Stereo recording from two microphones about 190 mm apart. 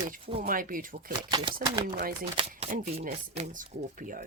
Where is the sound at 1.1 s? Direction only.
25° right (ahead or behind).